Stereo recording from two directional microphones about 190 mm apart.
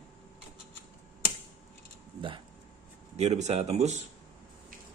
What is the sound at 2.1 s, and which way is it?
Speech, 25° right (ahead or behind).